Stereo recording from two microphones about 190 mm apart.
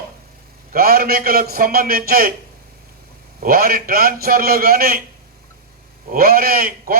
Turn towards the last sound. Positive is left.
turn(degrees=-50)  # may be behind; listen again after turning